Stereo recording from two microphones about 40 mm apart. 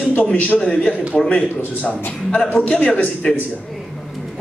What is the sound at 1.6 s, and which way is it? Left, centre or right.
Speech, left.